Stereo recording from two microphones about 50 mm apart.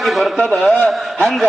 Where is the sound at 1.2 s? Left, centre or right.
Centre.